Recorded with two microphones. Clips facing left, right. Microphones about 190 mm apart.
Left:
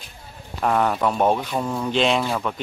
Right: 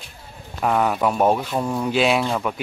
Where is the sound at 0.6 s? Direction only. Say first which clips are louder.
Right 1 dB; 5° right (ahead or behind).